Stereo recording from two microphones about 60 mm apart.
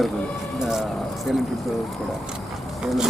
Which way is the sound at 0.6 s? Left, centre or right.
Centre.